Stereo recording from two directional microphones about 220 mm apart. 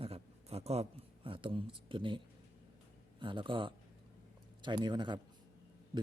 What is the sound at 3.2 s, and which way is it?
A man's voice, 20° right (ahead or behind).